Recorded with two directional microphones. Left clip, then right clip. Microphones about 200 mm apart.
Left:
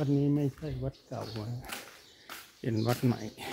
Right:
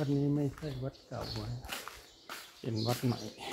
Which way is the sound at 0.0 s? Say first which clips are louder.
Left 3 dB; 30° left (ahead or behind).